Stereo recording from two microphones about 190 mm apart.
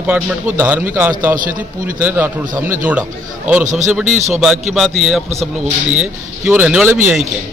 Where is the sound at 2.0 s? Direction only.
10° right (ahead or behind).